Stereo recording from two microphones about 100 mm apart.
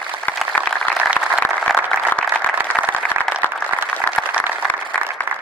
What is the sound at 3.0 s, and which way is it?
Applause, 10° left (ahead or behind).